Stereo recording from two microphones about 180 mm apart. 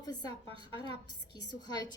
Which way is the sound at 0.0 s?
20° left (ahead or behind).